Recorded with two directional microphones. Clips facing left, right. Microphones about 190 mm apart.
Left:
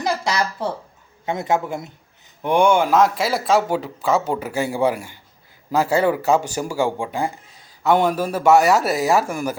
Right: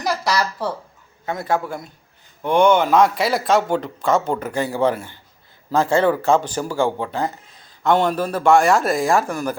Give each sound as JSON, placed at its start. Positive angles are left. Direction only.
{"t": 0.0, "sound": "a man's voice", "side_deg": 25}